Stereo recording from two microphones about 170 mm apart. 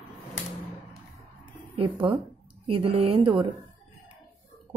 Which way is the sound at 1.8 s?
30° right (ahead or behind).